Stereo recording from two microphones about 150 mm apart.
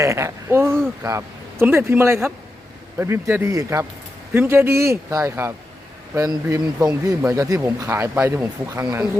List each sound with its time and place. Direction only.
0.0 s a man's voice: 20° right (ahead or behind)